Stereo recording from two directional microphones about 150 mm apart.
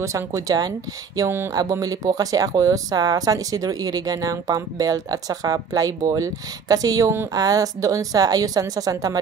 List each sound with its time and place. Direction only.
0.0 s speech: 20° right (ahead or behind)